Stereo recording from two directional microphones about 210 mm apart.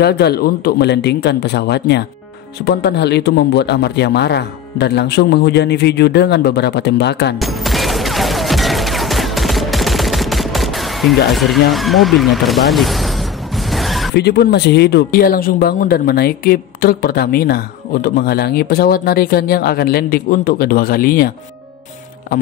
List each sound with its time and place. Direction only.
0.0 s speech: 50° left (ahead or behind)
7.3 s fusillade: centre (ahead or behind)
11.7 s a sound: centre (ahead or behind)
14.1 s speech: 50° left (ahead or behind)